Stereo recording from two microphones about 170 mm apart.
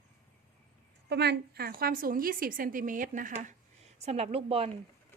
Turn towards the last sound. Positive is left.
turn(degrees=-35)  # may be behind; listen again after turning